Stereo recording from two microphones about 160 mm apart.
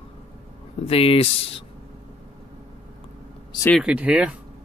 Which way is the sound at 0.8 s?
35° left (ahead or behind).